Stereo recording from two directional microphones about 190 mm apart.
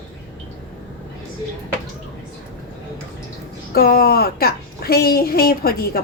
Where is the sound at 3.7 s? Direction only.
50° left (ahead or behind).